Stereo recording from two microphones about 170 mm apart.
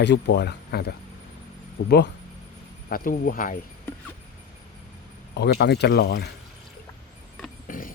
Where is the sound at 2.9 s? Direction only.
60° left (ahead or behind).